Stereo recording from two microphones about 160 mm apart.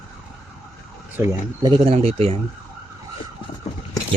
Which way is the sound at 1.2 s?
15° right (ahead or behind).